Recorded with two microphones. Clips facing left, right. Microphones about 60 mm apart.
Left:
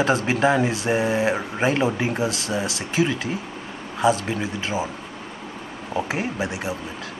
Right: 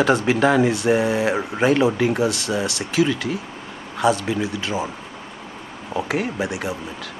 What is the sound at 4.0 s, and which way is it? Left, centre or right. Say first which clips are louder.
Speech: right 1 dB; centre.